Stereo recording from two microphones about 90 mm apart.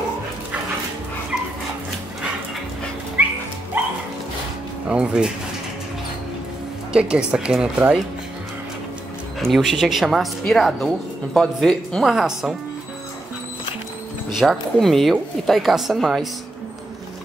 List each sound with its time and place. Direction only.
3.2 s music: 20° right (ahead or behind)
4.8 s speech: 10° right (ahead or behind)
6.9 s speech: 10° right (ahead or behind)
9.4 s a woman's voice: centre (ahead or behind)
14.4 s a woman's voice: centre (ahead or behind)